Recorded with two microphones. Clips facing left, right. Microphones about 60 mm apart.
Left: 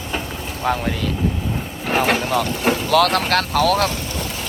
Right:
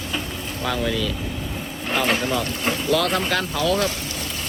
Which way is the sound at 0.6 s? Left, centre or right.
Left.